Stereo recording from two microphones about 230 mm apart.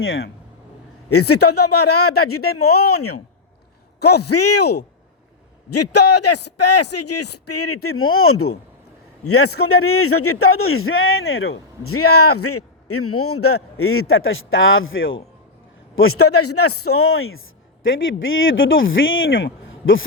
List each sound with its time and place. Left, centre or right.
0.0 s a man's voice: left
1.1 s a man's voice: left
4.2 s a man's voice: left
16.0 s a man's voice: left